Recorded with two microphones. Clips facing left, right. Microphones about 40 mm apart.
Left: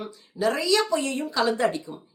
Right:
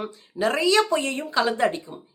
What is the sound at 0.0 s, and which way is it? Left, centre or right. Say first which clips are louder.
A woman's voice: right 1 dB; right.